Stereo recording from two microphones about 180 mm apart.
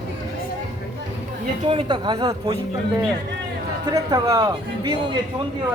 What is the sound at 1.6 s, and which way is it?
Speech, 35° right (ahead or behind).